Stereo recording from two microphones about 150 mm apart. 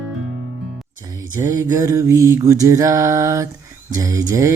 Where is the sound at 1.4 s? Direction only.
20° right (ahead or behind).